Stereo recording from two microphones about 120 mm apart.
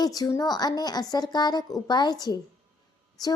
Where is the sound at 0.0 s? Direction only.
30° left (ahead or behind).